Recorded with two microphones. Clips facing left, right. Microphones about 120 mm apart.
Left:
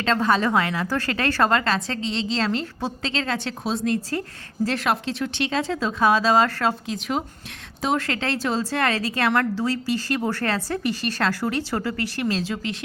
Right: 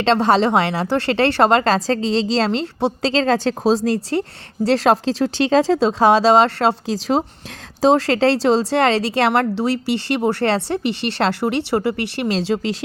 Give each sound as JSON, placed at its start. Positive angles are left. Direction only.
{"t": 0.0, "sound": "a woman's voice", "side_deg": -30}